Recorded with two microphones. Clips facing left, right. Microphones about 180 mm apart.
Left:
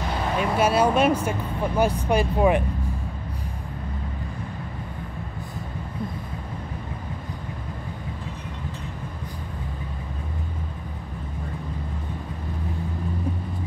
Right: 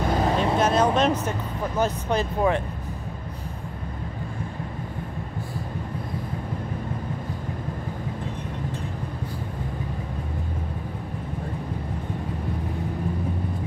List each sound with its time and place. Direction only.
0.0 s vehicle: 40° right (ahead or behind)
0.6 s speech: 10° left (ahead or behind)